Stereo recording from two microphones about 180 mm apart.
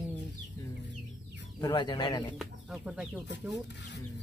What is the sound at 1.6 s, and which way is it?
Speech, 25° left (ahead or behind).